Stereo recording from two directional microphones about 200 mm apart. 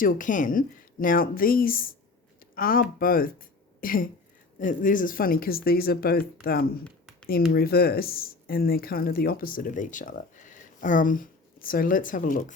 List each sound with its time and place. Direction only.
0.0 s speech: 40° left (ahead or behind)